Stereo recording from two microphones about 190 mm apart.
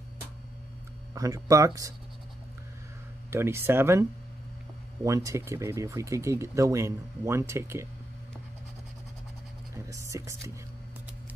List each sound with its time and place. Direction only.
1.1 s speech: 20° right (ahead or behind)
3.3 s speech: 10° right (ahead or behind)
5.0 s speech: 15° right (ahead or behind)
9.8 s speech: 15° right (ahead or behind)